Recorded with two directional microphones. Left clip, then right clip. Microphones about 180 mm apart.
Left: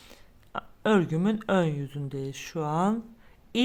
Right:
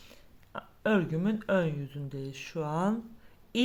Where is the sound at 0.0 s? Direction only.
35° left (ahead or behind).